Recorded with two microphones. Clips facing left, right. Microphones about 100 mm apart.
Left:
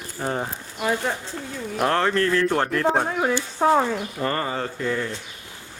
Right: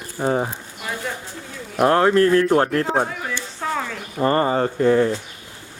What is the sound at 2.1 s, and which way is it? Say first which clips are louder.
Speech: right 6 dB; 30° right (ahead or behind).